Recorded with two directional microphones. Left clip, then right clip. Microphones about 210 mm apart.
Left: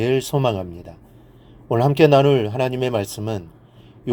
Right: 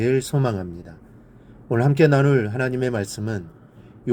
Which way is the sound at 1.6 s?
35° left (ahead or behind).